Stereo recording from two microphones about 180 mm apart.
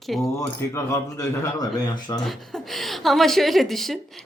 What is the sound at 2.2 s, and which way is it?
A woman's voice, centre (ahead or behind).